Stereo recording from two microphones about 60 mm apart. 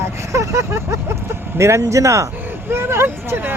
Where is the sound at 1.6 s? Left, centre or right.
Right.